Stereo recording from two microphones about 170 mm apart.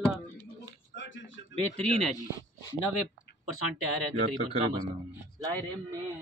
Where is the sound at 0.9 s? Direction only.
90° left.